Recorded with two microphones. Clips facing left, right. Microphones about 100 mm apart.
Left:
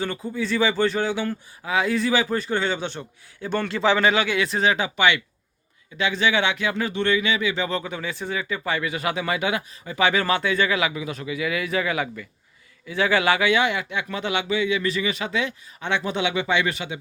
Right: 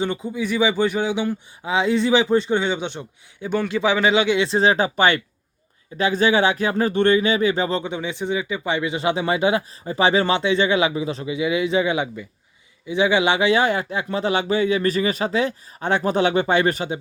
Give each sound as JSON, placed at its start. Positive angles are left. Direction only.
{"t": 0.0, "sound": "a man's voice", "side_deg": -20}
{"t": 4.1, "sound": "speech", "side_deg": -20}